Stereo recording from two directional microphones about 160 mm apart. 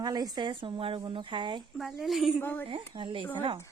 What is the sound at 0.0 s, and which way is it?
Speech, 25° right (ahead or behind).